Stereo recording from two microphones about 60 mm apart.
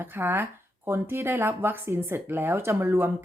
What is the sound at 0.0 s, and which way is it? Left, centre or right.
Speech, right.